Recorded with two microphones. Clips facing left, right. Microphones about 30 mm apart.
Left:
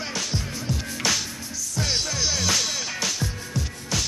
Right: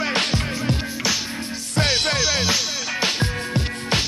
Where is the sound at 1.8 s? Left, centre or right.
Right.